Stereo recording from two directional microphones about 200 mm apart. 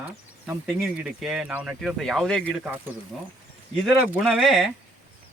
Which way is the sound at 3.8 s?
Centre (ahead or behind).